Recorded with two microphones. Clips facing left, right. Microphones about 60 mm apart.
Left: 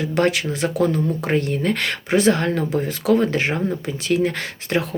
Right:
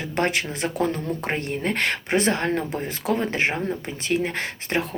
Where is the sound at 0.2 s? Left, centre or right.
Right.